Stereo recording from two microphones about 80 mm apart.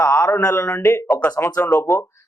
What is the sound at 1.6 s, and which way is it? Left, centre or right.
Speech, left.